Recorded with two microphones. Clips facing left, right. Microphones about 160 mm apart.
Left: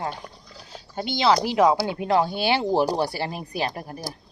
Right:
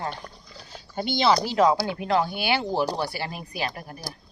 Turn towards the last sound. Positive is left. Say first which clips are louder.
# left 3 dB
turn(degrees=30)  # may be behind; listen again after turning